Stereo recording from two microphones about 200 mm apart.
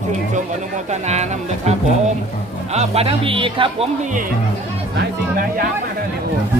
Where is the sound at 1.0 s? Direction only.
35° right (ahead or behind).